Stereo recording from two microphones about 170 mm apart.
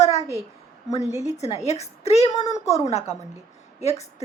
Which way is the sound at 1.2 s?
40° left (ahead or behind).